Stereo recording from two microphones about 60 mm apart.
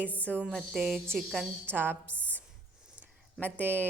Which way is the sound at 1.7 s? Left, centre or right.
Right.